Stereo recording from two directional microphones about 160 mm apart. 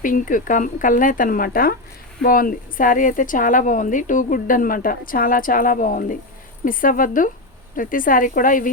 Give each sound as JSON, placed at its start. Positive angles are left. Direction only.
{"t": 0.0, "sound": "a woman's voice", "side_deg": 55}